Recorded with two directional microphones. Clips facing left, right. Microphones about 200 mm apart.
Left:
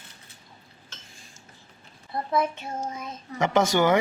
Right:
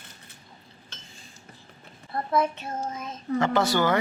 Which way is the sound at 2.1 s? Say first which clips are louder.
Right 1 dB; 10° left (ahead or behind).